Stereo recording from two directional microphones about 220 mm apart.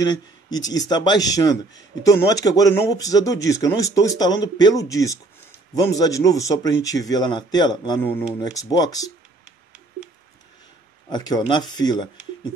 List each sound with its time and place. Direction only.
0.0 s speech: 15° left (ahead or behind)
11.1 s speech: 20° left (ahead or behind)